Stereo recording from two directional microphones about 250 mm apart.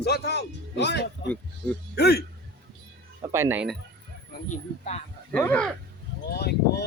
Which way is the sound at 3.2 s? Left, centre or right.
Centre.